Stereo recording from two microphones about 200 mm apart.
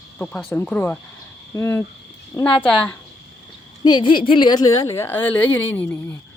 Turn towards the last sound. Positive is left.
turn(degrees=10)  # may be behind; listen again after turning